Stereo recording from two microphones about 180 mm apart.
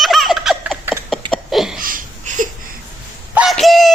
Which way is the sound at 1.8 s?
50° right (ahead or behind).